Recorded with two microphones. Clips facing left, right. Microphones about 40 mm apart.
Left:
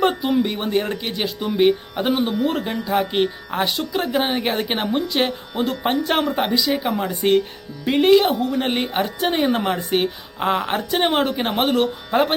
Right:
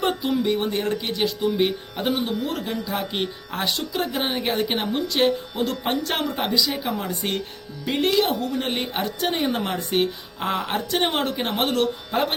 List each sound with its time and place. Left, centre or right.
0.0 s speech: centre
2.2 s speech: left; by 12.3 s centre